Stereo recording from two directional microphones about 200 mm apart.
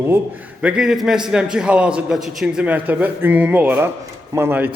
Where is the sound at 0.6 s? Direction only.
5° right (ahead or behind).